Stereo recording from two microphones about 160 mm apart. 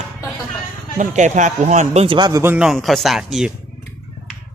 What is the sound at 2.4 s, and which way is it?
Speech, 10° right (ahead or behind).